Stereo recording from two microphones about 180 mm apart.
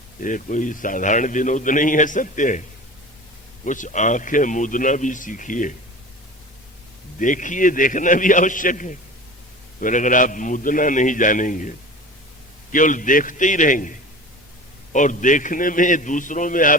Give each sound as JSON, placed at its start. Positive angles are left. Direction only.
{"t": 0.2, "sound": "a man's voice", "side_deg": 45}
{"t": 7.2, "sound": "a man's voice", "side_deg": 45}
{"t": 12.7, "sound": "a man's voice", "side_deg": 45}
{"t": 14.9, "sound": "a man's voice", "side_deg": 45}